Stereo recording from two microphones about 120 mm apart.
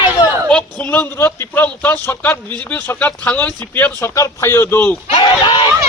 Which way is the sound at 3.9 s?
25° left (ahead or behind).